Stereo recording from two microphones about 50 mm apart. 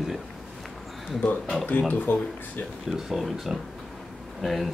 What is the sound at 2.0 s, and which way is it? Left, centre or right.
Speech, left.